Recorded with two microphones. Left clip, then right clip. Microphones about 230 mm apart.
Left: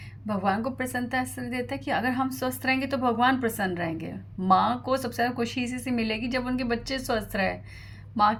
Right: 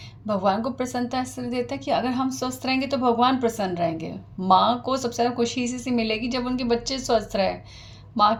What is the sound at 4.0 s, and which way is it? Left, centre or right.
Speech, left.